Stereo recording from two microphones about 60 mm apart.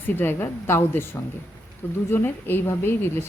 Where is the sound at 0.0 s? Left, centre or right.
Left.